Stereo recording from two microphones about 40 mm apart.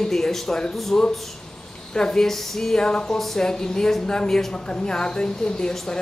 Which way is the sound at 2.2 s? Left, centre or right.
Centre.